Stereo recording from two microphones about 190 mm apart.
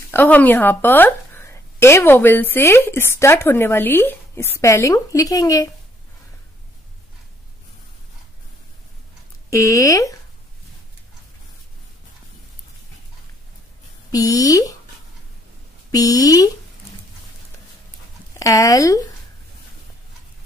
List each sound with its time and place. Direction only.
0.1 s a woman's voice: 10° left (ahead or behind)
9.5 s a woman's voice: 15° left (ahead or behind)
14.1 s a woman's voice: 20° left (ahead or behind)
15.9 s speech: 20° left (ahead or behind)
18.3 s speech: 15° left (ahead or behind)